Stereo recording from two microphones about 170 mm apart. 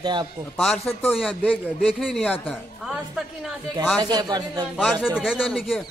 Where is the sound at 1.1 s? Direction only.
Centre (ahead or behind).